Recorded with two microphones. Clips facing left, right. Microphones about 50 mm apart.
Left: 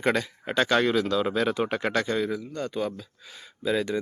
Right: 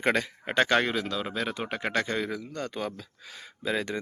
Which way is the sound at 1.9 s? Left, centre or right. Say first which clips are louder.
Left 3 dB; right.